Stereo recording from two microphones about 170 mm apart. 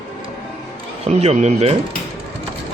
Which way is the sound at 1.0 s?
40° right (ahead or behind).